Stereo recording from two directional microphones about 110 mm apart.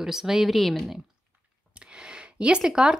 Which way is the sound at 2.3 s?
10° right (ahead or behind).